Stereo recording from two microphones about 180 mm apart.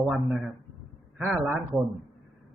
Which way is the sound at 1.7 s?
20° left (ahead or behind).